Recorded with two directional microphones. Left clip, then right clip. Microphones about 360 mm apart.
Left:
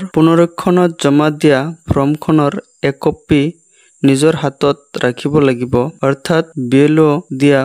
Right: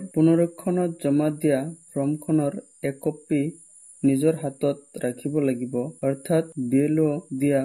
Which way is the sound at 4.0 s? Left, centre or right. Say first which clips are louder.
Left 10 dB; left.